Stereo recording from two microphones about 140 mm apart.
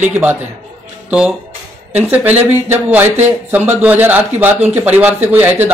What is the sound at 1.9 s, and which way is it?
Speech, 10° right (ahead or behind).